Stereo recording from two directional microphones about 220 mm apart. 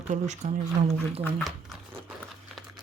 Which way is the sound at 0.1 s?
30° right (ahead or behind).